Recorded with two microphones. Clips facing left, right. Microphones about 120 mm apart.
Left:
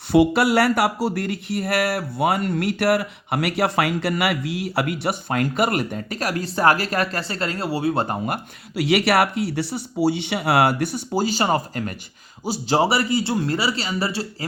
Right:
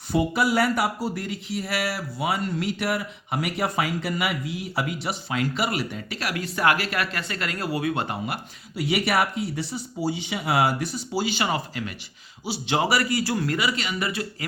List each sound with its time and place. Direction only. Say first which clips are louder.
0.1 s speech: left 6 dB; 70° left (ahead or behind); by 8.4 s 40° left (ahead or behind)
8.7 s speech: left 5 dB; 75° left (ahead or behind); by 11.2 s 60° left (ahead or behind)
11.2 s speech: left 5 dB; 40° left (ahead or behind)